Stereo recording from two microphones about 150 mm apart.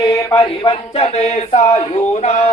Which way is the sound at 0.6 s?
40° left (ahead or behind).